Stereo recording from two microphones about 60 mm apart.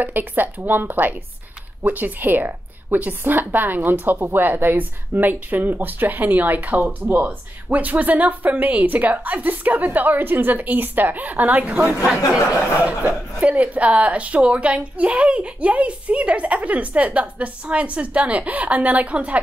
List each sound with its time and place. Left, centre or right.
0.0 s a woman's voice: right